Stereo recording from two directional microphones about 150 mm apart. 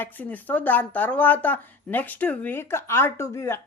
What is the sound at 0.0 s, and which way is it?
Speech, 10° left (ahead or behind).